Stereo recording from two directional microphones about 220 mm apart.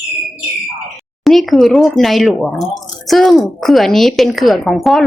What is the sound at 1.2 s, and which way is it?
Speech, centre (ahead or behind).